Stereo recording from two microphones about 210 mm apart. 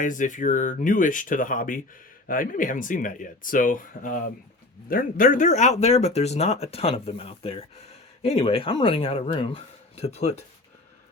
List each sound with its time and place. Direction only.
0.0 s speech: 40° left (ahead or behind)